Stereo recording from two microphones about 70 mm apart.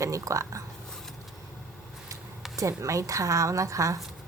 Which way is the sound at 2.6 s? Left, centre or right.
Right.